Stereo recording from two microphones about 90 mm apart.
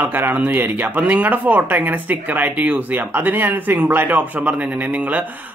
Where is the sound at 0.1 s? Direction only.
20° right (ahead or behind).